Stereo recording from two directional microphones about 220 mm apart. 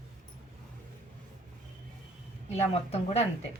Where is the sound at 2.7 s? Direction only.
25° left (ahead or behind).